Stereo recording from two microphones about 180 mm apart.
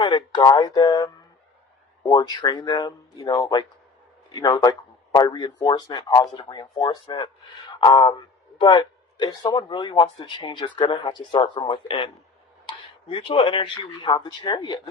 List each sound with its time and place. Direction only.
0.0 s a man's voice: 25° left (ahead or behind)